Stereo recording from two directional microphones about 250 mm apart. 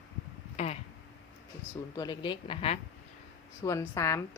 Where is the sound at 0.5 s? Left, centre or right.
Left.